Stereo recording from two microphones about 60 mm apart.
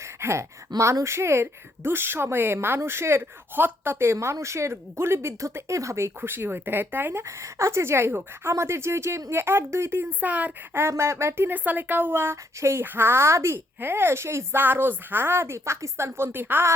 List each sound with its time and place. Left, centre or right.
0.0 s speech: right
6.2 s speech: right
10.1 s speech: right
10.8 s speech: right
11.5 s speech: right
12.5 s speech: right
12.8 s speech: right
14.6 s speech: right